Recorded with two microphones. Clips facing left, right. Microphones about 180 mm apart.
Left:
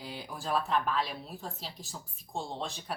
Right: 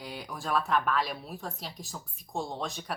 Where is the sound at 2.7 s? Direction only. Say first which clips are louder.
Right 2 dB; centre (ahead or behind).